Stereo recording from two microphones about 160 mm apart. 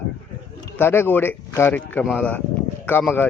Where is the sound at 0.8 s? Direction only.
15° left (ahead or behind).